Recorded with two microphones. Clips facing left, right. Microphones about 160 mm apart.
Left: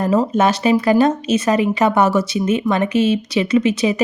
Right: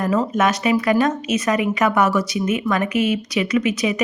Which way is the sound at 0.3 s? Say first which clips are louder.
Left 3 dB; 30° left (ahead or behind).